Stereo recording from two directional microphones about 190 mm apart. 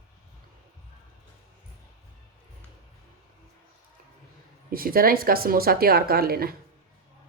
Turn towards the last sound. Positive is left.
turn(degrees=-55)  # may be behind; listen again after turning